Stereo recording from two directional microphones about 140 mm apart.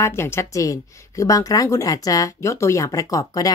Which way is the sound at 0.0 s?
20° left (ahead or behind).